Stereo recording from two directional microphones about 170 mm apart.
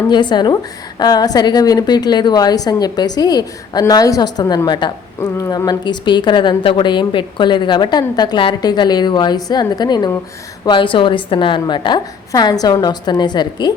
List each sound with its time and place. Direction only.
0.1 s a woman's voice: 25° left (ahead or behind)